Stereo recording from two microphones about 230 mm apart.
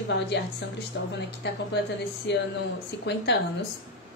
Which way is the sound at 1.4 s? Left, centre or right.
Left.